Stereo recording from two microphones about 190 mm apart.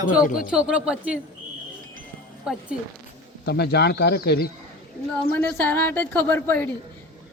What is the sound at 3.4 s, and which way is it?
Speech, 60° left (ahead or behind).